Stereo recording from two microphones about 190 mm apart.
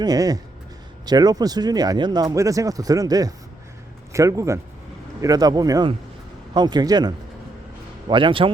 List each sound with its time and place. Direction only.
0.0 s a man's voice: 20° right (ahead or behind)